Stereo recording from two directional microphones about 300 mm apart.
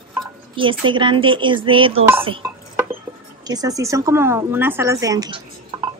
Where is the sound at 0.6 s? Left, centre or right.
Centre.